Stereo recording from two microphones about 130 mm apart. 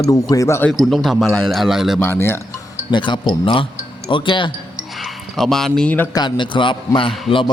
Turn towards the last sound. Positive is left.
turn(degrees=40)  # may be behind; listen again after turning